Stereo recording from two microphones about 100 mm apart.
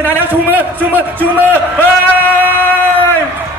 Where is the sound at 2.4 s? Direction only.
20° left (ahead or behind).